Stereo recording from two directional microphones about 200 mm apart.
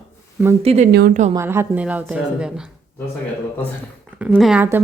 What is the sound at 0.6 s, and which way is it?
Speech, 30° right (ahead or behind).